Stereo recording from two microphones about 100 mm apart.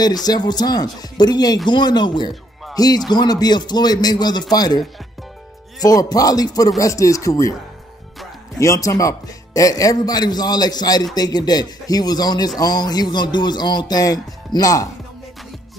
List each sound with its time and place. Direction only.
0.0 s a man's voice: 40° left (ahead or behind)
8.5 s speech: 30° left (ahead or behind)